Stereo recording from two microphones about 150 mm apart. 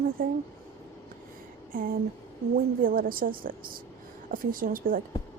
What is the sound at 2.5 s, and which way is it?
A woman's voice, 70° right (ahead or behind).